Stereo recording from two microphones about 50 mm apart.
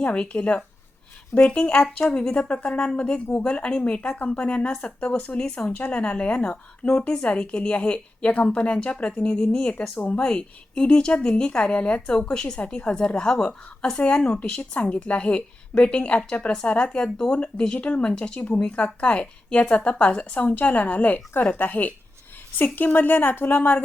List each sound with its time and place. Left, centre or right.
0.0 s a woman's voice: left
9.4 s a woman's voice: left
9.6 s a woman's voice: left